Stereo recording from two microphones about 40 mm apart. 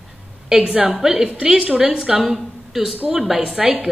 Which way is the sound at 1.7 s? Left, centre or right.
Right.